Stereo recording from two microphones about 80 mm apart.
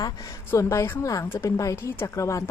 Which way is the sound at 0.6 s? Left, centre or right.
Left.